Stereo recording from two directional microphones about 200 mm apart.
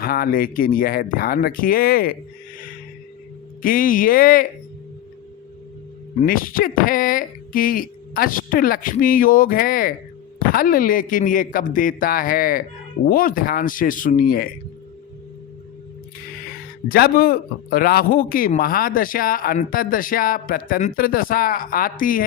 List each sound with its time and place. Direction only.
0.0 s a man's voice: 50° left (ahead or behind)
3.6 s a man's voice: 45° left (ahead or behind)
6.2 s a man's voice: 45° left (ahead or behind)
16.9 s a man's voice: 45° left (ahead or behind)